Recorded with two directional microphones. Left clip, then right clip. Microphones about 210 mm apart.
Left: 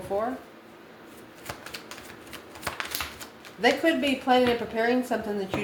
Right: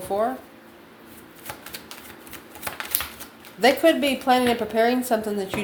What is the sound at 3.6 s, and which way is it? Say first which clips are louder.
A woman's voice: right 5 dB; 45° right (ahead or behind).